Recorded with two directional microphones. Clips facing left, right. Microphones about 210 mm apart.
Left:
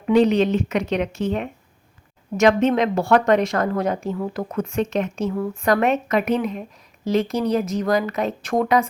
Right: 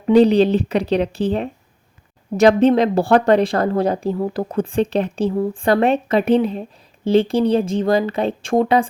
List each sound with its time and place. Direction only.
0.0 s a woman's voice: 35° right (ahead or behind)